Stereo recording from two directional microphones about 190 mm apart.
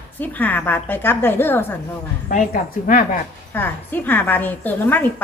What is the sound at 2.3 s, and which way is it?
Speech, 45° left (ahead or behind).